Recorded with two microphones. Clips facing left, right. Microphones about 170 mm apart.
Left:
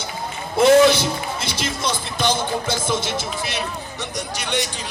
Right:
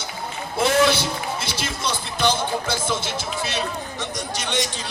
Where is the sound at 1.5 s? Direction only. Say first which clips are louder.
Left 3 dB; 15° left (ahead or behind).